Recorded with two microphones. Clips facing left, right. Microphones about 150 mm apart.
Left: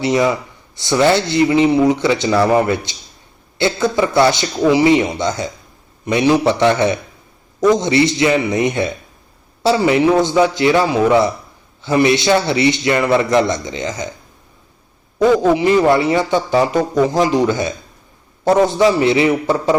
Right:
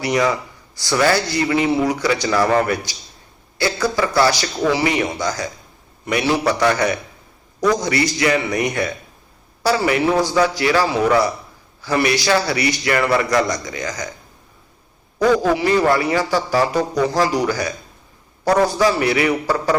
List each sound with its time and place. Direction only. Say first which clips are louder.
0.0 s a man's voice: left 3 dB; 25° left (ahead or behind)
15.4 s a man's voice: left 4 dB; 20° left (ahead or behind)